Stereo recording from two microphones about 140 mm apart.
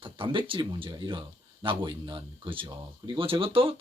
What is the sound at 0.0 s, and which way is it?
Speech, 35° right (ahead or behind).